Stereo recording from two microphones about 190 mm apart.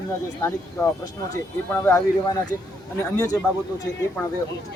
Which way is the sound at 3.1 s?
15° left (ahead or behind).